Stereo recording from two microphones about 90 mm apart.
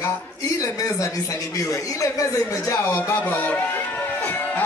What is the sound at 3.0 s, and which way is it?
Speech, 20° left (ahead or behind).